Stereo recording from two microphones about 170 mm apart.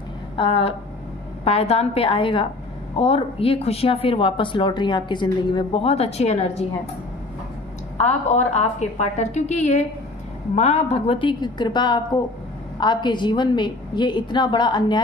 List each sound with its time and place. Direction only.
0.4 s speech: 35° left (ahead or behind)
8.0 s a woman's voice: 45° left (ahead or behind); by 15.0 s 25° left (ahead or behind)